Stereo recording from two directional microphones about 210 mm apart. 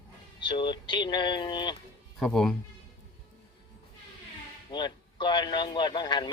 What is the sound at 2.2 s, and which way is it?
Speech, centre (ahead or behind).